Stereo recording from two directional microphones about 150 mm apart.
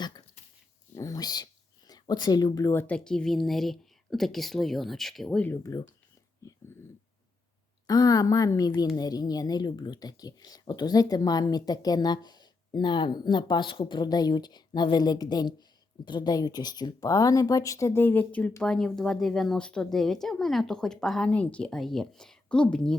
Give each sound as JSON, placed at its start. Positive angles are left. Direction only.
{"t": 0.9, "sound": "a woman's voice", "side_deg": 25}
{"t": 5.6, "sound": "speech", "side_deg": 20}
{"t": 6.4, "sound": "a sound", "side_deg": 20}
{"t": 7.9, "sound": "a woman's voice", "side_deg": 25}